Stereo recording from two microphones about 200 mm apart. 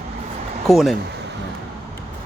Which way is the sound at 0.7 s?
Centre (ahead or behind).